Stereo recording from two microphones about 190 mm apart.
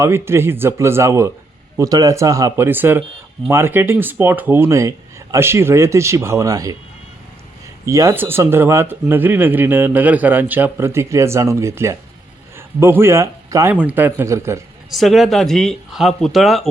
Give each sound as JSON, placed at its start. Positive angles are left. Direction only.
{"t": 0.0, "sound": "speech", "side_deg": -15}
{"t": 7.9, "sound": "a man's voice", "side_deg": -15}
{"t": 14.8, "sound": "speech", "side_deg": 0}